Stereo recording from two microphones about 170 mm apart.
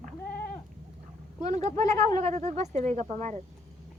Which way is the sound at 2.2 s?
40° right (ahead or behind).